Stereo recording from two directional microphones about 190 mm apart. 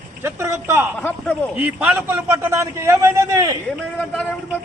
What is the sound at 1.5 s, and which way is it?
A man's voice, 10° right (ahead or behind).